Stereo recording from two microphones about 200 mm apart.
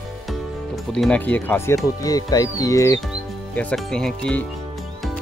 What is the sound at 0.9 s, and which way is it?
Speech, 5° left (ahead or behind).